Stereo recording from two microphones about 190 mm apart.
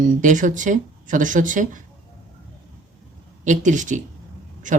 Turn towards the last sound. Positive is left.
turn(degrees=-40)  # may be behind; listen again after turning